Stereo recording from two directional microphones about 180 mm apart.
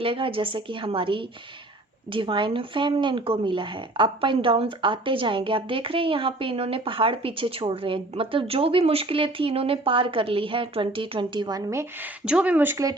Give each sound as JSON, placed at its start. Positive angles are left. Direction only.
{"t": 0.0, "sound": "speech", "side_deg": -30}